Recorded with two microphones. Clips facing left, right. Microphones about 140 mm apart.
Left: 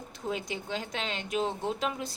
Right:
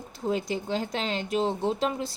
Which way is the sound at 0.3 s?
35° right (ahead or behind).